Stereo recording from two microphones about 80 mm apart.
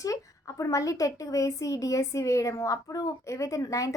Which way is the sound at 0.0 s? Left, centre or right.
Left.